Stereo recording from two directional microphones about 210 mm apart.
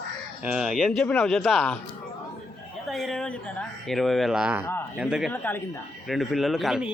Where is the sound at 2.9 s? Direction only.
Centre (ahead or behind).